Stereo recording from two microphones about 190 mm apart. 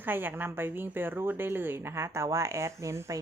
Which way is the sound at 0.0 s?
10° right (ahead or behind).